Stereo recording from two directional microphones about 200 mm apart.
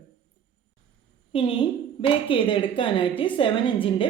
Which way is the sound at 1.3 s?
25° left (ahead or behind).